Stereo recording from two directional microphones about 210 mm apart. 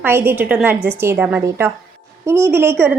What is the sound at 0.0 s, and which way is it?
A woman's voice, 10° right (ahead or behind).